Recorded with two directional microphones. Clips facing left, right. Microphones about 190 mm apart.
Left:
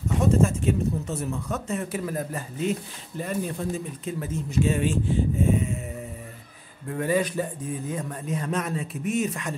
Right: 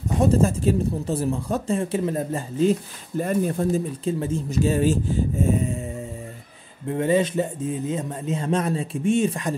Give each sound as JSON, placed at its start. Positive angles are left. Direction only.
{"t": 0.2, "sound": "speech", "side_deg": -35}
{"t": 3.2, "sound": "speech", "side_deg": -45}
{"t": 4.0, "sound": "speech", "side_deg": -30}
{"t": 6.9, "sound": "speech", "side_deg": -25}